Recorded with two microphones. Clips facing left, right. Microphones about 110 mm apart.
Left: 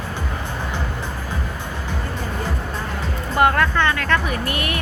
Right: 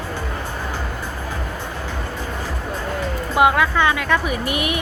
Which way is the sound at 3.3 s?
5° right (ahead or behind).